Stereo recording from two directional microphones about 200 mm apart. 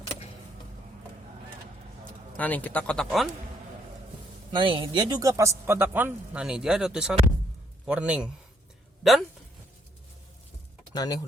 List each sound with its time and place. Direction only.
2.3 s speech: 10° left (ahead or behind)
4.5 s a man's voice: 25° right (ahead or behind); by 8.3 s 5° right (ahead or behind)
10.9 s speech: 20° left (ahead or behind)